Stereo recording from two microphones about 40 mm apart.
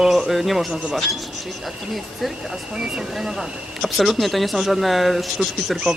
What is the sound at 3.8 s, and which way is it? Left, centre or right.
Speech, centre.